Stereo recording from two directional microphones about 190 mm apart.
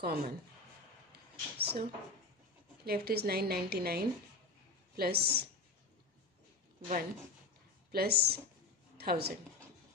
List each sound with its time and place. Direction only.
0.0 s a woman's voice: 55° right (ahead or behind)
1.1 s a sound: 55° right (ahead or behind)
2.8 s a woman's voice: 55° right (ahead or behind)
7.9 s a woman's voice: 55° right (ahead or behind)